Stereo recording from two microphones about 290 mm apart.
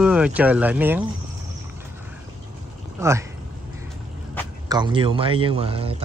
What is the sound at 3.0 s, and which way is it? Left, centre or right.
Speech, centre.